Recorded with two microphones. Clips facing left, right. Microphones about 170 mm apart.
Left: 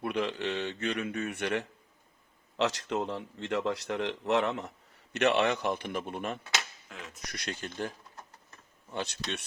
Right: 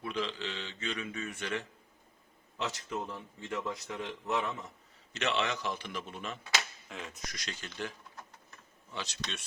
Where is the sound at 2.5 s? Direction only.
80° left.